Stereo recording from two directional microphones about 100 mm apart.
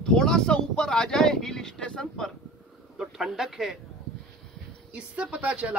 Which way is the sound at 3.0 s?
5° right (ahead or behind).